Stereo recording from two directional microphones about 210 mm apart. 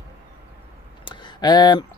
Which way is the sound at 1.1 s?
20° left (ahead or behind).